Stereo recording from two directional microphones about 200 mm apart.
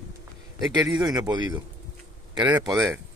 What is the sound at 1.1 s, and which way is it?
Speech, 20° right (ahead or behind).